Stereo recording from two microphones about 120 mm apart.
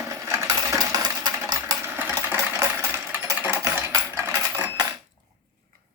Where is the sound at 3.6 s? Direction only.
25° right (ahead or behind).